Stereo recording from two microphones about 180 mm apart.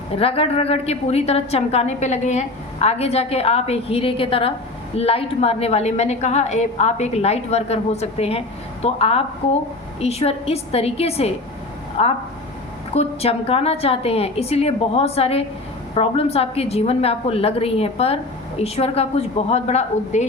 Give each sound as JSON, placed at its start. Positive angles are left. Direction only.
{"t": 0.2, "sound": "a woman's voice", "side_deg": 30}